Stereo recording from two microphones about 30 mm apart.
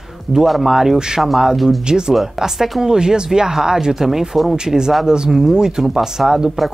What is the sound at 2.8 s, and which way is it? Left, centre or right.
Speech, right.